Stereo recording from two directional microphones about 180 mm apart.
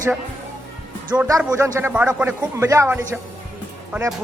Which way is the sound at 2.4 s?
20° right (ahead or behind).